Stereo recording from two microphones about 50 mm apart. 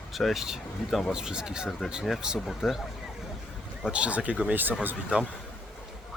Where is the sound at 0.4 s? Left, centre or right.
Centre.